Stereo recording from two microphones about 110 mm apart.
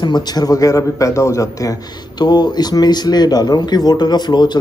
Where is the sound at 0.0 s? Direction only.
40° left (ahead or behind).